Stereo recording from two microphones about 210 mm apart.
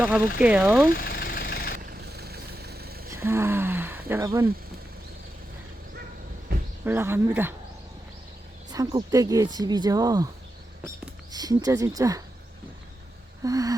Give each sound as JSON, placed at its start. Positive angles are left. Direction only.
{"t": 0.0, "sound": "speech", "side_deg": -5}
{"t": 0.9, "sound": "vehicle", "side_deg": 45}
{"t": 1.9, "sound": "vehicle", "side_deg": -50}
{"t": 3.1, "sound": "a sound", "side_deg": -10}
{"t": 6.8, "sound": "speech", "side_deg": -10}
{"t": 8.7, "sound": "speech", "side_deg": -20}
{"t": 13.4, "sound": "speech", "side_deg": -15}